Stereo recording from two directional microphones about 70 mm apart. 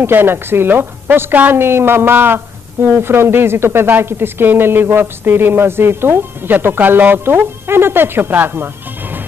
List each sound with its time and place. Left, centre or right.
0.0 s a woman's voice: right